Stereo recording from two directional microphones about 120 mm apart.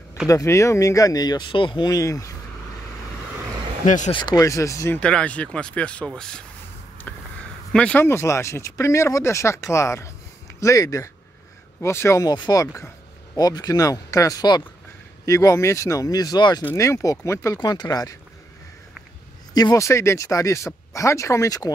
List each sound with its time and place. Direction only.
0.3 s speech: 25° left (ahead or behind)
3.8 s speech: 90° left
4.1 s speech: 40° left (ahead or behind)
4.4 s speech: 25° left (ahead or behind)
4.9 s speech: 10° left (ahead or behind)
7.1 s a sound: 15° left (ahead or behind)
7.7 s speech: 10° left (ahead or behind)
8.0 s speech: 20° left (ahead or behind)
12.4 s a sound: 30° left (ahead or behind)
13.4 s speech: 35° left (ahead or behind)
16.7 s speech: 25° left (ahead or behind)
17.6 s speech: 35° left (ahead or behind)
19.5 s speech: 30° left (ahead or behind)